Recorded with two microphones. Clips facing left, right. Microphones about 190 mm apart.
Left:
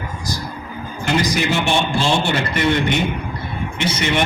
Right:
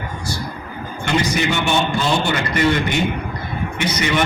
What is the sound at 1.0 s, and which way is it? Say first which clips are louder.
A man's voice: even; 35° left (ahead or behind).